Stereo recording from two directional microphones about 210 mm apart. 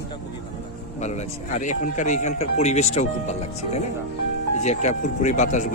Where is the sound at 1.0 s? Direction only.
35° left (ahead or behind).